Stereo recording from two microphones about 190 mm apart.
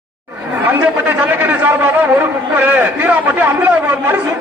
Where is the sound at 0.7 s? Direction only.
10° right (ahead or behind).